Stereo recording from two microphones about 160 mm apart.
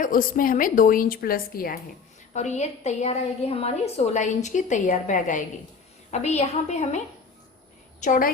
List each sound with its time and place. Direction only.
0.0 s a woman's voice: 60° left (ahead or behind)
2.3 s a woman's voice: 45° left (ahead or behind)
8.0 s a woman's voice: 55° left (ahead or behind)